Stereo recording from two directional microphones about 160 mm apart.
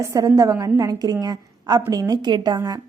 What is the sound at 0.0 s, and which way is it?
A woman's voice, 20° right (ahead or behind).